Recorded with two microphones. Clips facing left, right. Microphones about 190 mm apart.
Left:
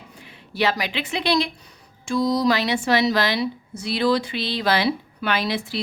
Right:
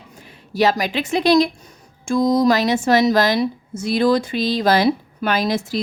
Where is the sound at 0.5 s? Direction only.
40° right (ahead or behind).